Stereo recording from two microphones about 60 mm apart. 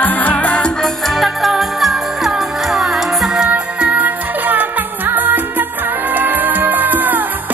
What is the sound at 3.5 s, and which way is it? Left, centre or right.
Music, right.